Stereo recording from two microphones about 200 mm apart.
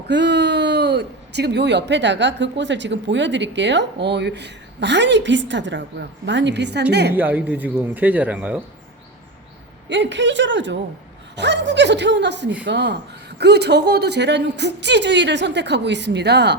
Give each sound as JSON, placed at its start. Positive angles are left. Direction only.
{"t": 0.1, "sound": "speech", "side_deg": -60}
{"t": 7.1, "sound": "speech", "side_deg": -10}
{"t": 9.9, "sound": "speech", "side_deg": -60}